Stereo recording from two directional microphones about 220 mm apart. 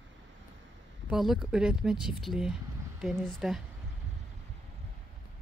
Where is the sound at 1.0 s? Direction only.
Centre (ahead or behind).